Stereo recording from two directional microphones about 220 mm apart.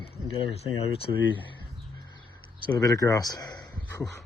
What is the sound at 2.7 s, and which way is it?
Speech, 15° left (ahead or behind).